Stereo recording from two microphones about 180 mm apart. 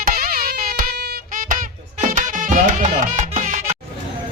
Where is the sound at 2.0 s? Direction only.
45° right (ahead or behind).